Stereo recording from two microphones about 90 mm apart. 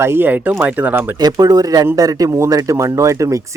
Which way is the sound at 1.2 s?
50° right (ahead or behind).